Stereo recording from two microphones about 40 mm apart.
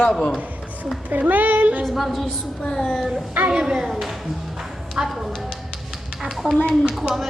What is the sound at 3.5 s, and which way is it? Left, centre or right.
A woman's voice, centre.